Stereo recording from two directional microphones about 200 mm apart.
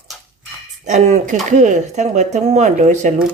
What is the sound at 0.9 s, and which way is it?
Speech, 35° right (ahead or behind).